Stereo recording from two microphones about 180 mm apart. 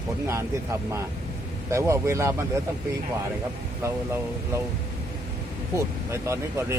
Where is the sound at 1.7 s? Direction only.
15° right (ahead or behind).